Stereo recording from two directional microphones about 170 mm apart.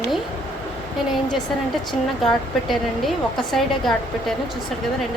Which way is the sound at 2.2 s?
Centre (ahead or behind).